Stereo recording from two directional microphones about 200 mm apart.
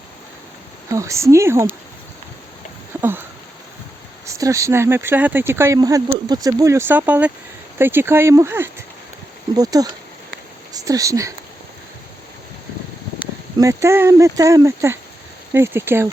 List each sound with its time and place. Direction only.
0.9 s speech: 15° right (ahead or behind)
3.0 s a sound: 10° right (ahead or behind)
4.4 s speech: 15° right (ahead or behind)
13.6 s speech: 15° right (ahead or behind)